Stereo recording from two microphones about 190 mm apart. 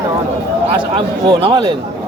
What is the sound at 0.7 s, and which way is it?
Speech, 25° right (ahead or behind).